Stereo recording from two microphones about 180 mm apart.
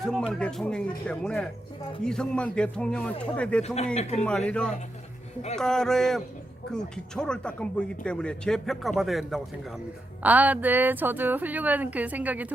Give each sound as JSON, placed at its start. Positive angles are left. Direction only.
{"t": 0.0, "sound": "speech", "side_deg": 5}
{"t": 3.9, "sound": "a man's voice", "side_deg": 35}
{"t": 4.2, "sound": "a woman's voice", "side_deg": 5}